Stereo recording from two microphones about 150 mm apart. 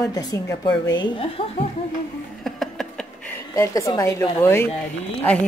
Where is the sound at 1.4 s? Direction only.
35° left (ahead or behind).